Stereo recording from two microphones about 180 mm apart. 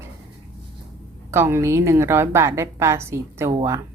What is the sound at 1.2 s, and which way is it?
A woman's voice, 15° right (ahead or behind).